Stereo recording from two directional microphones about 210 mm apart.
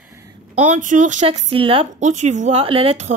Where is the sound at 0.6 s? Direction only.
35° right (ahead or behind).